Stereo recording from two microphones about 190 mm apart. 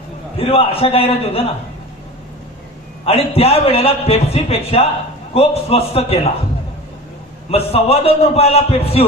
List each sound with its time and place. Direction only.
0.3 s a man's voice: 30° left (ahead or behind)
3.1 s a man's voice: 30° left (ahead or behind)
7.5 s a man's voice: 30° left (ahead or behind)